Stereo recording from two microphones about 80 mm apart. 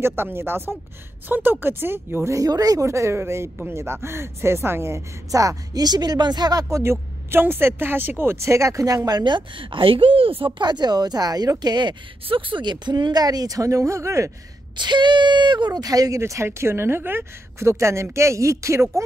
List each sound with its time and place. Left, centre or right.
0.0 s speech: right
2.3 s speech: right
2.9 s speech: right
6.7 s speech: right
9.2 s speech: right
10.4 s speech: right
12.4 s speech: right
14.8 s speech: right
16.2 s speech: right